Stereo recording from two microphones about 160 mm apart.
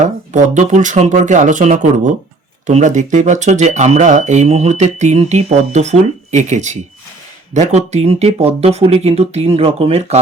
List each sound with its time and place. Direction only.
0.0 s speech: 50° right (ahead or behind)